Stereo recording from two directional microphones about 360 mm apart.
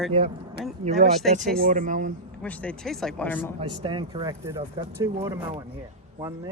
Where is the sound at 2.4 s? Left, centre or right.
Centre.